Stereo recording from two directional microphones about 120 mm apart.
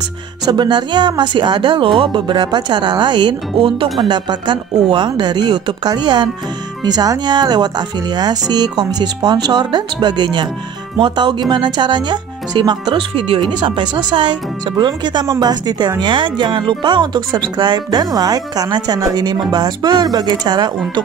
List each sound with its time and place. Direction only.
0.5 s speech: 35° right (ahead or behind)